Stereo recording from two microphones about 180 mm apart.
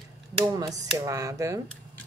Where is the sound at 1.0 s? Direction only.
15° right (ahead or behind).